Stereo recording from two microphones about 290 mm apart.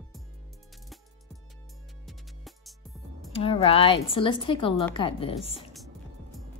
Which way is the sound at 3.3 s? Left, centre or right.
Centre.